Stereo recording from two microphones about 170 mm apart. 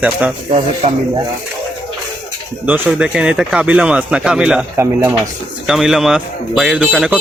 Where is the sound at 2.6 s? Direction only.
10° right (ahead or behind).